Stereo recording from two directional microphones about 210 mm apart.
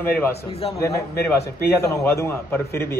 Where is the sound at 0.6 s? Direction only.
25° left (ahead or behind).